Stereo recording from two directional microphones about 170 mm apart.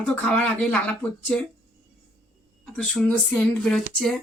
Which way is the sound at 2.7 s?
5° left (ahead or behind).